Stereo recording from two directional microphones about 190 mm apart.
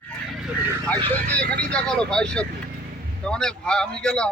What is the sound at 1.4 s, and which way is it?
Speech, 50° right (ahead or behind).